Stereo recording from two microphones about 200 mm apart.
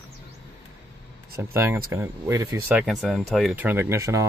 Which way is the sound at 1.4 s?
10° right (ahead or behind).